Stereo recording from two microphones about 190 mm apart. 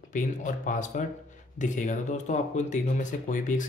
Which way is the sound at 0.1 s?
40° left (ahead or behind).